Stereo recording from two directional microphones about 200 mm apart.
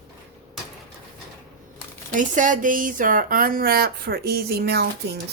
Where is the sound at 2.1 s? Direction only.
40° right (ahead or behind).